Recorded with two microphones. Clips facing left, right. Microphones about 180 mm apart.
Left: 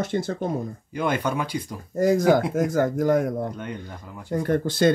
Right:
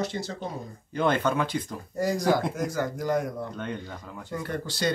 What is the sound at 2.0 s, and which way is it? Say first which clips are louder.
Speech: left 6 dB; 50° left (ahead or behind).